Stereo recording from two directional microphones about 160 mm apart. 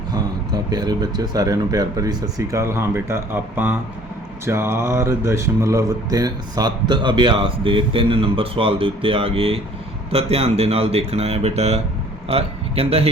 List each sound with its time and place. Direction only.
0.1 s speech: 25° right (ahead or behind)